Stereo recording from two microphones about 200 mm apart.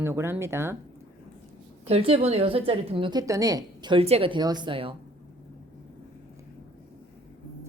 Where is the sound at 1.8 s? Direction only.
30° right (ahead or behind).